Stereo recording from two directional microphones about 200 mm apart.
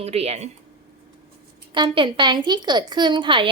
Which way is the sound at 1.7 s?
25° right (ahead or behind).